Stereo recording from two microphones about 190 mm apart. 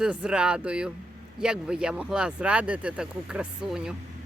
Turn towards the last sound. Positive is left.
turn(degrees=-5)  # may be behind; listen again after turning